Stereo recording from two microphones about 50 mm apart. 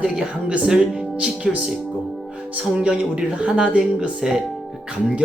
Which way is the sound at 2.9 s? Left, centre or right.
Centre.